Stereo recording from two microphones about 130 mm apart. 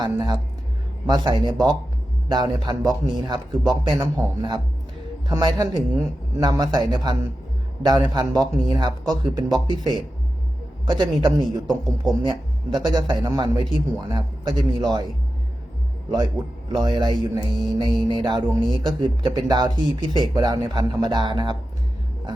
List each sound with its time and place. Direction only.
0.0 s speech: 35° right (ahead or behind)
16.1 s speech: 35° right (ahead or behind)